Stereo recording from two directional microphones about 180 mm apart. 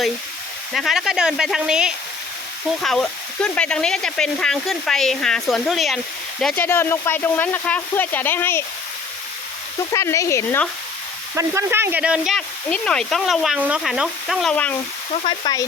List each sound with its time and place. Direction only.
0.7 s speech: centre (ahead or behind)
9.9 s speech: 15° left (ahead or behind)
11.3 s speech: 15° right (ahead or behind); by 14.8 s 5° left (ahead or behind)
15.1 s frying: 25° left (ahead or behind)